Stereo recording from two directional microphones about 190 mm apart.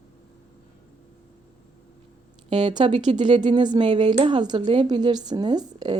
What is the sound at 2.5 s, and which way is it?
Speech, 25° right (ahead or behind).